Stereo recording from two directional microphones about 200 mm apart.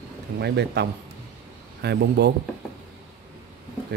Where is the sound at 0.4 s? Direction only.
55° right (ahead or behind).